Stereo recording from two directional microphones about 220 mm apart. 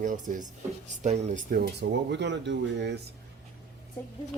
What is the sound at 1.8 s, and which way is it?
Speech, 55° right (ahead or behind).